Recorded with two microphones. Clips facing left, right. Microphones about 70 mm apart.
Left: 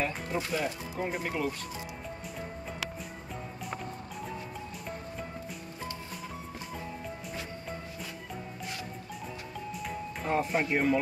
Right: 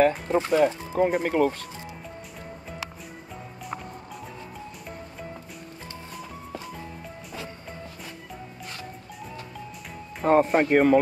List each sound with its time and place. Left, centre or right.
0.3 s speech: right
10.2 s speech: right